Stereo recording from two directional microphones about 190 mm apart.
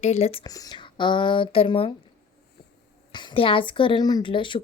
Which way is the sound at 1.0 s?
25° left (ahead or behind).